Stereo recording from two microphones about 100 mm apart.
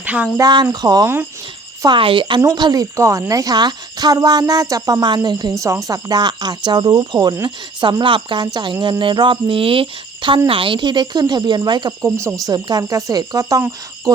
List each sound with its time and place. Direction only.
0.0 s speech: 15° right (ahead or behind)
0.3 s speech: 45° right (ahead or behind)
1.0 s speech: 25° right (ahead or behind)
2.0 s speech: 60° right (ahead or behind)
2.9 s speech: 30° right (ahead or behind)
12.0 s speech: 30° right (ahead or behind)